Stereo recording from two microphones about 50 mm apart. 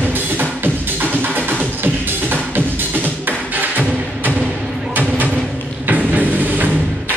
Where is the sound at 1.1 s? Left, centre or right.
Right.